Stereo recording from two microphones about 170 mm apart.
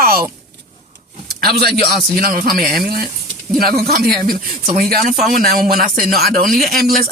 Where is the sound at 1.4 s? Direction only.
65° right (ahead or behind).